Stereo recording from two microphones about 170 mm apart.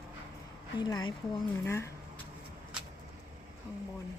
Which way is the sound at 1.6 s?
15° left (ahead or behind).